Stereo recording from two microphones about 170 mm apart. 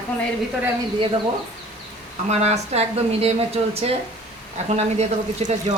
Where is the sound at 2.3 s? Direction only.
40° right (ahead or behind).